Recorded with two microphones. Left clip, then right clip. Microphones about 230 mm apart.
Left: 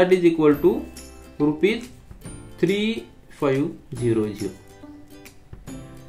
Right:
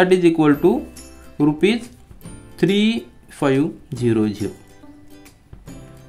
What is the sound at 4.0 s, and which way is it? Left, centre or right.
Speech, right.